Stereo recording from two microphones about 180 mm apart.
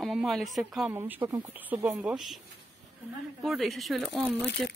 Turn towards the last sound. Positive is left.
turn(degrees=0)  # may be behind; listen again after turning